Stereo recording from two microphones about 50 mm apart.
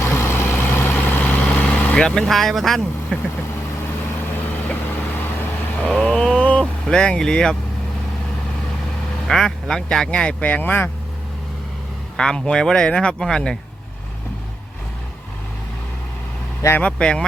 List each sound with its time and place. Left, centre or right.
0.0 s vehicle: left
2.0 s speech: centre
4.5 s vehicle: left
5.8 s vehicle: centre
6.8 s speech: centre
9.2 s speech: centre
10.4 s speech: left
12.1 s speech: centre
16.8 s speech: left